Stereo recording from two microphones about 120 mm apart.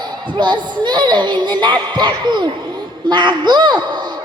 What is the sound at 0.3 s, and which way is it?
Speech, 40° right (ahead or behind).